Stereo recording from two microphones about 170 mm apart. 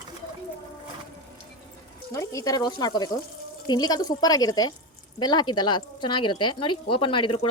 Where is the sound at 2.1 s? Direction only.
20° left (ahead or behind).